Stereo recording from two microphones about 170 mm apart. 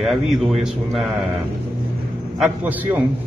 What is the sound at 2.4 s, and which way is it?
Speech, 10° right (ahead or behind).